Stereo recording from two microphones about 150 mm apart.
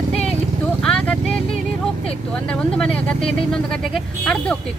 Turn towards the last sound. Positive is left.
turn(degrees=5)  # may be behind; listen again after turning